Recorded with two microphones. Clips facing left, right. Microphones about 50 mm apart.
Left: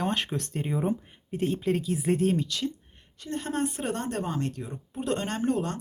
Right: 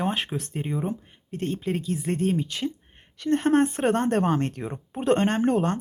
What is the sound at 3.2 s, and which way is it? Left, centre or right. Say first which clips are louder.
Speech: right 9 dB; right.